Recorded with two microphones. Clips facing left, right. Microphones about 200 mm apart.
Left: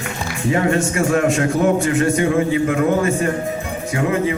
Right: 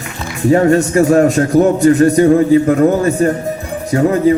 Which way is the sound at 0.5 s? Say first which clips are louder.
Right 8 dB; 40° right (ahead or behind).